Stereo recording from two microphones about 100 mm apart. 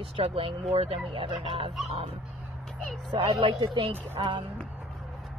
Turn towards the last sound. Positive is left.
turn(degrees=-60)  # may be behind; listen again after turning